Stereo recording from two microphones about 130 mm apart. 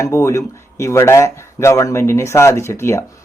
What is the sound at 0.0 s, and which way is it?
Speech, 20° left (ahead or behind).